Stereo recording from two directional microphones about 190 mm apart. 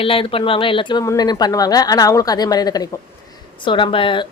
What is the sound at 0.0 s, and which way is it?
Speech, 30° left (ahead or behind).